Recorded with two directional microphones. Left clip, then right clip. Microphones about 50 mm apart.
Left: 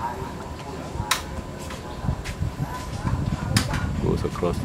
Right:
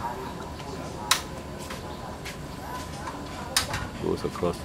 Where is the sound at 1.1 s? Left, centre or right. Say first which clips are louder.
Even; right.